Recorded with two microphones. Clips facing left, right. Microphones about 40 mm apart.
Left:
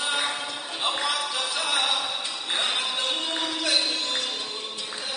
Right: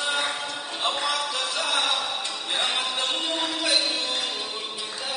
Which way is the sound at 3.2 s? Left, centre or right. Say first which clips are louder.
Right 1 dB; centre.